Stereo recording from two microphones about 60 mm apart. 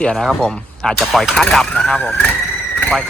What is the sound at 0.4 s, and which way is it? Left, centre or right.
Speech, centre.